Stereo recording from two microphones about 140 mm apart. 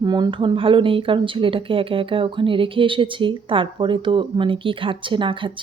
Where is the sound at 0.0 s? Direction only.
30° right (ahead or behind).